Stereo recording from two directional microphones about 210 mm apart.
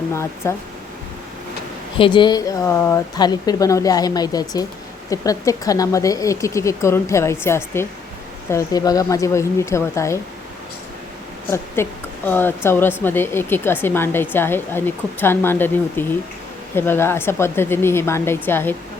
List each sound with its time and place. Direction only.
0.1 s speech: 15° left (ahead or behind)
2.0 s speech: 20° left (ahead or behind)
11.5 s speech: 10° left (ahead or behind)